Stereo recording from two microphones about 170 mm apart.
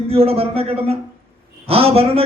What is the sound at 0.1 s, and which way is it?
Speech, 35° right (ahead or behind).